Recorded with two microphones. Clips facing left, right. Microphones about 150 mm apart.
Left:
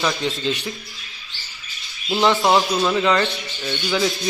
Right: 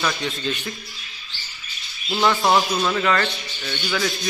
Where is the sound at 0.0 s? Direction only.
20° left (ahead or behind).